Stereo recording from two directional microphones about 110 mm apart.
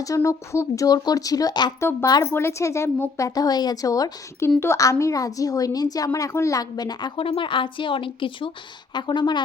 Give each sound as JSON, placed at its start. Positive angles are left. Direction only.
{"t": 0.0, "sound": "speech", "side_deg": 30}
{"t": 1.8, "sound": "a woman's voice", "side_deg": 25}
{"t": 2.0, "sound": "speech", "side_deg": 35}
{"t": 2.3, "sound": "a woman's voice", "side_deg": 25}